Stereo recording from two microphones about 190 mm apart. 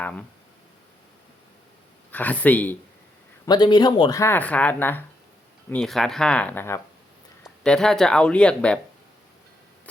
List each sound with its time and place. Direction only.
0.0 s speech: 5° left (ahead or behind)
2.1 s speech: 10° left (ahead or behind)
3.4 s speech: 20° left (ahead or behind); by 8.8 s 5° left (ahead or behind)